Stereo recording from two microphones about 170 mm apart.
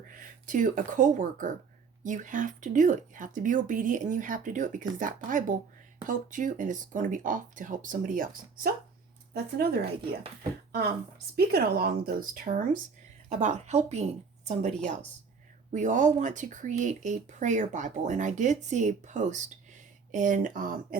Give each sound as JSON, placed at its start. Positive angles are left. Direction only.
{"t": 0.1, "sound": "speech", "side_deg": -55}
{"t": 9.3, "sound": "speech", "side_deg": -65}
{"t": 15.7, "sound": "speech", "side_deg": -45}